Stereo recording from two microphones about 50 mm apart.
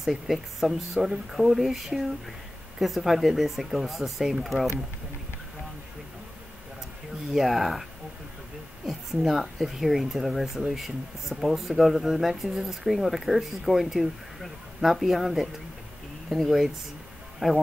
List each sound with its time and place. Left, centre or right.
0.0 s speech: centre
7.3 s speech: centre
8.8 s speech: centre